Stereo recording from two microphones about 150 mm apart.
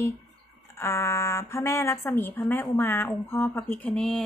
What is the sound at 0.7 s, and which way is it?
Speech, 20° left (ahead or behind).